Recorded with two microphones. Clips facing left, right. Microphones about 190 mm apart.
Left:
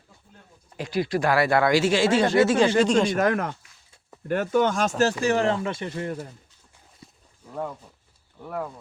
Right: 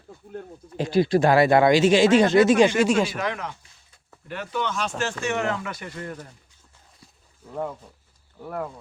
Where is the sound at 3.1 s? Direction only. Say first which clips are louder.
Left 6 dB; 50° left (ahead or behind).